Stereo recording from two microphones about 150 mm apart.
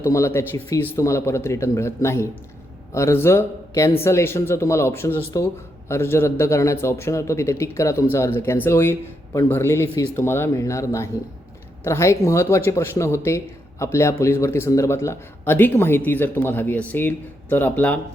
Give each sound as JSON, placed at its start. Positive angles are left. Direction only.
{"t": 0.0, "sound": "speech", "side_deg": 15}